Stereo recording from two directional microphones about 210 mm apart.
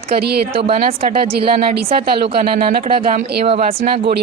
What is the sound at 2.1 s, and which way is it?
Speech, 25° right (ahead or behind).